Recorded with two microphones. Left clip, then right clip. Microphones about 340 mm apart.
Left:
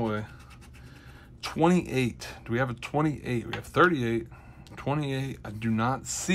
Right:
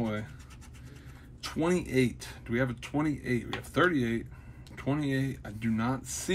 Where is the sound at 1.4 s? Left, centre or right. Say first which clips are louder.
Left 5 dB; left.